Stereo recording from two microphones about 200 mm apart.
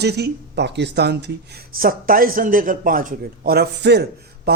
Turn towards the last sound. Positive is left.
turn(degrees=-50)  # may be behind; listen again after turning